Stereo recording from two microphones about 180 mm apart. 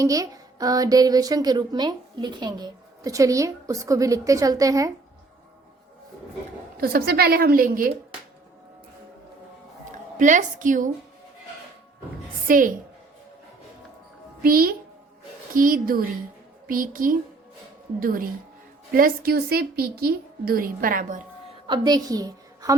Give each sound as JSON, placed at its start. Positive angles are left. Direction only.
{"t": 0.0, "sound": "a woman's voice", "side_deg": -20}
{"t": 6.7, "sound": "a woman's voice", "side_deg": -60}
{"t": 10.2, "sound": "a woman's voice", "side_deg": -45}
{"t": 12.5, "sound": "a woman's voice", "side_deg": -50}
{"t": 14.4, "sound": "a woman's voice", "side_deg": -55}
{"t": 21.7, "sound": "a woman's voice", "side_deg": -20}